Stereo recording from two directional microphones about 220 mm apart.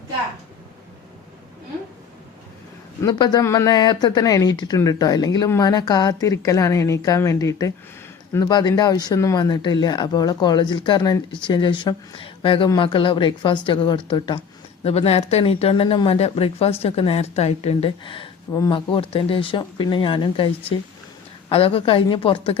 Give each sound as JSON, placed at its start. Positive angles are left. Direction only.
{"t": 3.0, "sound": "a woman's voice", "side_deg": 20}